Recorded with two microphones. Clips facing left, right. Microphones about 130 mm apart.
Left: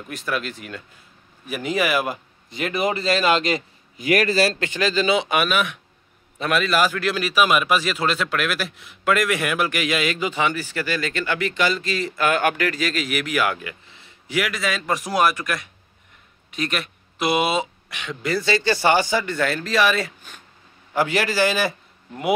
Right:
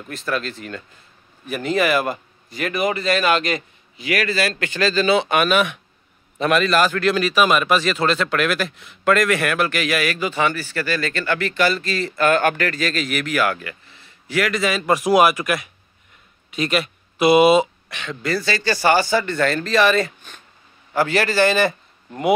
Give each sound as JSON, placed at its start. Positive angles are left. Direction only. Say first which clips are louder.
{"t": 0.1, "sound": "a man's voice", "louder": "right 2 dB", "side_deg": 10}
{"t": 2.5, "sound": "a man's voice", "louder": "right 1 dB", "side_deg": 25}
{"t": 3.9, "sound": "a man's voice", "louder": "left 3 dB", "side_deg": 45}
{"t": 4.6, "sound": "a man's voice", "louder": "right 2 dB", "side_deg": 15}
{"t": 5.4, "sound": "a man's voice", "louder": "right 4 dB", "side_deg": 0}
{"t": 14.6, "sound": "speech", "louder": "right 5 dB", "side_deg": -5}
{"t": 17.8, "sound": "a man's voice", "louder": "right 1 dB", "side_deg": 10}